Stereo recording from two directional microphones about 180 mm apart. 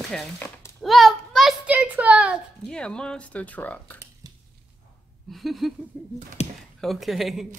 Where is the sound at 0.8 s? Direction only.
Centre (ahead or behind).